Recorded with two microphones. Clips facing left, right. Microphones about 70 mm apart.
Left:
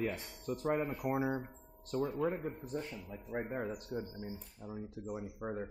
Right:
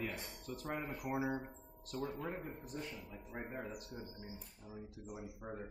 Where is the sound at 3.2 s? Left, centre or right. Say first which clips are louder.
Left 9 dB; left.